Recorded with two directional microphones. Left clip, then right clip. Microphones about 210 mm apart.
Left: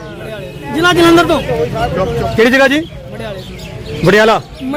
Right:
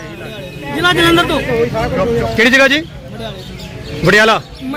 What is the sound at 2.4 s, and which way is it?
Speech, 15° left (ahead or behind).